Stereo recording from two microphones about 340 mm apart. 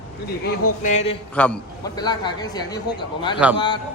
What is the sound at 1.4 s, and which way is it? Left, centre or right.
Speech, centre.